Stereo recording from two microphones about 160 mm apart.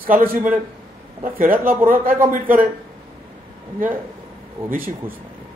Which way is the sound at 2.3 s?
60° right (ahead or behind).